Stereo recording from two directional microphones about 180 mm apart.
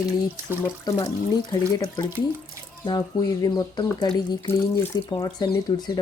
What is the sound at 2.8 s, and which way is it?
Speech, 25° left (ahead or behind).